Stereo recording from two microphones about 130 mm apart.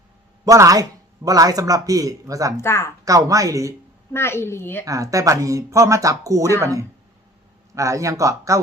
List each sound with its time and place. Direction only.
0.4 s speech: 25° right (ahead or behind)
2.6 s a woman's voice: 20° left (ahead or behind)
3.0 s speech: 25° right (ahead or behind)
4.1 s a woman's voice: 20° left (ahead or behind)
4.9 s speech: 25° right (ahead or behind)